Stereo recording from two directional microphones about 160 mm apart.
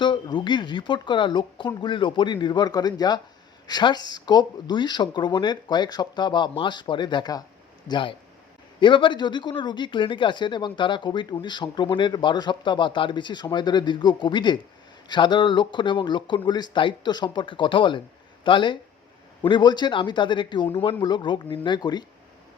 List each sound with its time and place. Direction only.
0.0 s speech: 30° left (ahead or behind)